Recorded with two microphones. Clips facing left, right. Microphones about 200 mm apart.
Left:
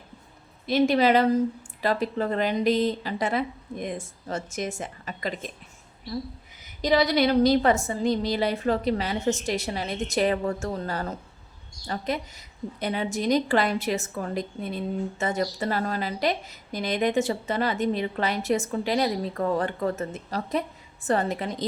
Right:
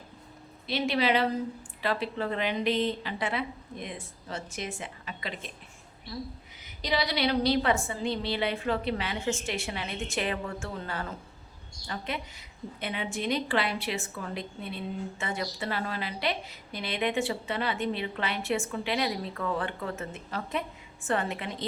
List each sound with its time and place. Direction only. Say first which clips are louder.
0.7 s a woman's voice: left 7 dB; 45° left (ahead or behind)
6.8 s a woman's voice: left 7 dB; 45° left (ahead or behind)